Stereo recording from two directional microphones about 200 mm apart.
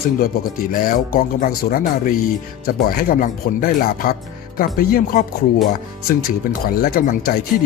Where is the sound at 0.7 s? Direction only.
45° left (ahead or behind).